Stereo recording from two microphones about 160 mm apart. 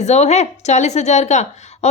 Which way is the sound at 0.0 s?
45° left (ahead or behind).